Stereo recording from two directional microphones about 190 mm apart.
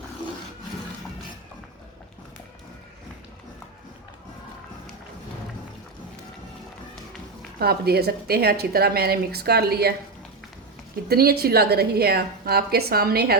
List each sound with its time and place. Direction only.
7.6 s a woman's voice: 55° right (ahead or behind)
11.1 s a woman's voice: 55° right (ahead or behind)